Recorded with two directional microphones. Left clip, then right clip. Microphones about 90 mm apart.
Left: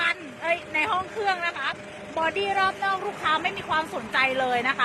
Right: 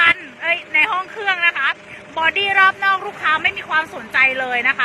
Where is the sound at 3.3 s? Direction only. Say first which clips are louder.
Right 8 dB; 30° left (ahead or behind).